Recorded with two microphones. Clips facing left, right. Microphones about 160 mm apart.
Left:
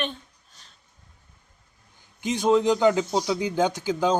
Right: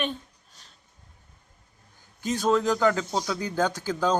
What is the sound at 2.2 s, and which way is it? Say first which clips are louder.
Speech: left 3 dB; 15° left (ahead or behind).